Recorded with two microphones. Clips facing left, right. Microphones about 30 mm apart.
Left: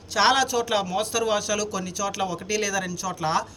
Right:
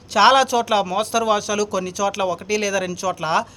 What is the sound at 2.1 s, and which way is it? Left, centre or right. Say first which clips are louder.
Speech: right 5 dB; right.